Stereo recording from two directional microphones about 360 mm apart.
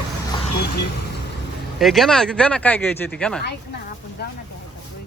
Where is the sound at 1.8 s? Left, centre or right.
Centre.